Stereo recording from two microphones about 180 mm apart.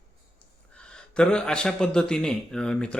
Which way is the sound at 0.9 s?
5° left (ahead or behind).